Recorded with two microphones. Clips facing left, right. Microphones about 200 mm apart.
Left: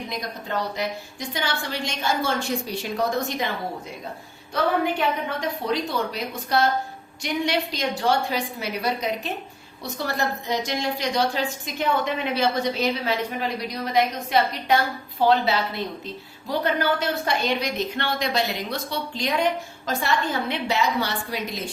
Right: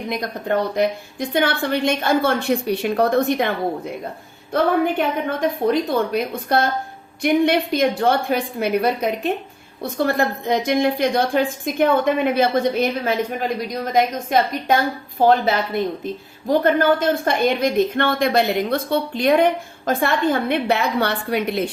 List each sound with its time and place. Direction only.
0.1 s speech: 55° right (ahead or behind)
4.5 s a woman's voice: 55° right (ahead or behind)